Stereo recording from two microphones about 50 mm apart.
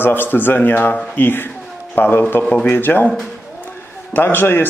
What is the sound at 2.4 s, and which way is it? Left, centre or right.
Speech, left.